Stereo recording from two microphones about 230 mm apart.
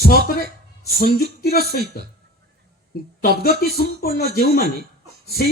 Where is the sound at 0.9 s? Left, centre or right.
Left.